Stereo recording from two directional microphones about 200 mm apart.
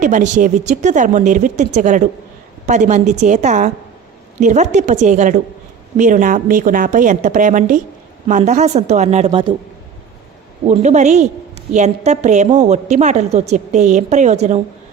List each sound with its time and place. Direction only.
0.0 s a woman's voice: 40° right (ahead or behind)
10.7 s a woman's voice: 35° right (ahead or behind)